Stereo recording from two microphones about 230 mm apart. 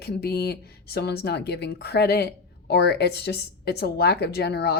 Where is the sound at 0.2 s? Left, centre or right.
Left.